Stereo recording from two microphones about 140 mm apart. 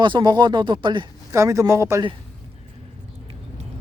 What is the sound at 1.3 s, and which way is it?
Speech, 20° right (ahead or behind).